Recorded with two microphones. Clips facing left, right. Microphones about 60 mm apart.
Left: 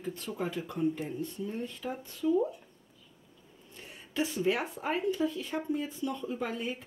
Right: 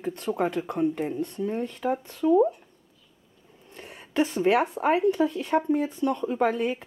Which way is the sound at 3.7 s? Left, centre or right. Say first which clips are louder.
Right 8 dB; right.